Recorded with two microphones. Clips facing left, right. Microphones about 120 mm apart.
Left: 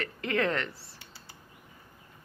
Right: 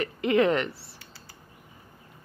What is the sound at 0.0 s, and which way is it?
Speech, 15° right (ahead or behind).